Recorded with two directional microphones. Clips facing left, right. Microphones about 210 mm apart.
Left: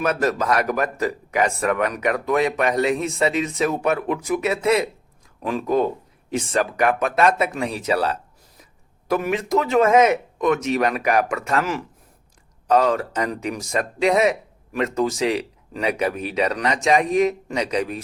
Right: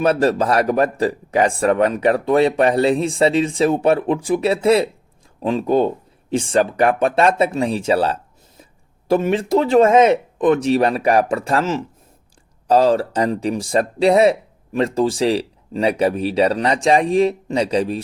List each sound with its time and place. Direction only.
0.0 s speech: 30° right (ahead or behind)